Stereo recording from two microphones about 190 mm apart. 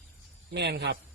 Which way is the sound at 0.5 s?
65° right (ahead or behind).